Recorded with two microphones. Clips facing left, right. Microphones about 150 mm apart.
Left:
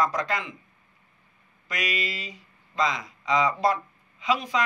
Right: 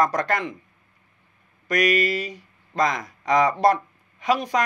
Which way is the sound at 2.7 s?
50° right (ahead or behind).